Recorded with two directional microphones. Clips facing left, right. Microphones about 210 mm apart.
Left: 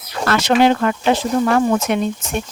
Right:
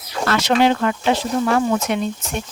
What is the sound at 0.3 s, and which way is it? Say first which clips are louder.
Speech: left 2 dB; 50° left (ahead or behind).